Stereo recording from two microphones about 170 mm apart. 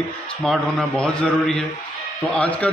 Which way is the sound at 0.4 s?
Centre (ahead or behind).